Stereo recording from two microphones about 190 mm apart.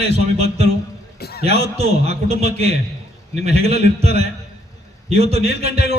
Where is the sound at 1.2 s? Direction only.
60° left (ahead or behind).